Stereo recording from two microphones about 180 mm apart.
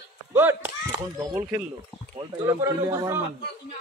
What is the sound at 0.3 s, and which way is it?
Speech, 10° right (ahead or behind).